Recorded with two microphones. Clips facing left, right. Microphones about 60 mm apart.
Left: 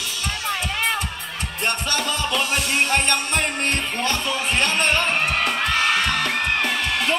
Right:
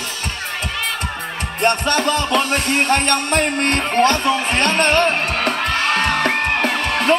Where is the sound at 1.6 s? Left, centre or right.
Right.